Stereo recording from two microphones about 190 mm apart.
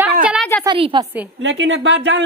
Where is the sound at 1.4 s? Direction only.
80° right.